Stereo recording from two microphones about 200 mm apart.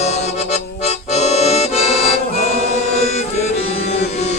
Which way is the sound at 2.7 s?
35° left (ahead or behind).